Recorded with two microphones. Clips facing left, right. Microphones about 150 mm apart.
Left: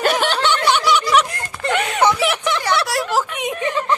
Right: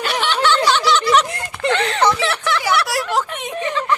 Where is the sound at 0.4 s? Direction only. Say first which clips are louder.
Right 4 dB; 15° left (ahead or behind).